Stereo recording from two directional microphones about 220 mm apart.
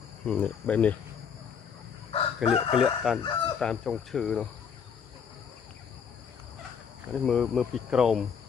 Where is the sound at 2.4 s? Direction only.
25° left (ahead or behind).